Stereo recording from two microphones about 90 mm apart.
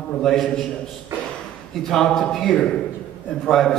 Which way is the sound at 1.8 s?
5° left (ahead or behind).